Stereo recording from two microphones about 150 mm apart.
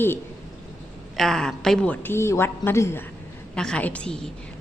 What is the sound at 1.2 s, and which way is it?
A woman's voice, 5° left (ahead or behind).